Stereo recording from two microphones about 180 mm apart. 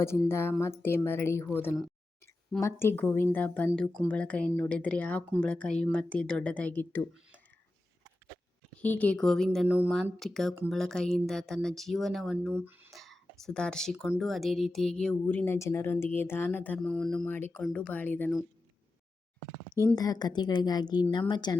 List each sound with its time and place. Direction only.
0.3 s speech: 15° left (ahead or behind)
8.8 s speech: 10° left (ahead or behind)
12.5 s speech: 10° right (ahead or behind)
12.9 s speech: centre (ahead or behind)
20.0 s a woman's voice: 20° left (ahead or behind)